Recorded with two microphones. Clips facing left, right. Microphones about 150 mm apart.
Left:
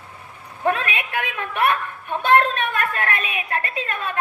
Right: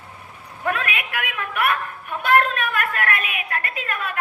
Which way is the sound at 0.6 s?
30° left (ahead or behind).